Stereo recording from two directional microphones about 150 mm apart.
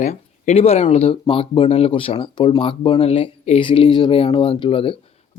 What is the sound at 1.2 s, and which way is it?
Speech, 35° left (ahead or behind).